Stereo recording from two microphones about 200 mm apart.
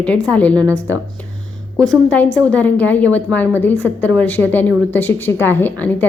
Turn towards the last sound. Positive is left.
turn(degrees=10)  # may be behind; listen again after turning